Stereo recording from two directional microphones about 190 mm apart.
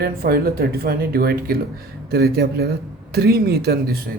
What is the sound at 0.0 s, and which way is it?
Speech, 55° right (ahead or behind).